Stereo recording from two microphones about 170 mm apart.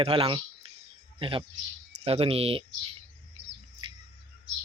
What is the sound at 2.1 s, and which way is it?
Speech, 35° right (ahead or behind).